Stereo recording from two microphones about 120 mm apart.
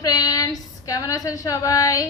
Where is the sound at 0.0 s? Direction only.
30° left (ahead or behind).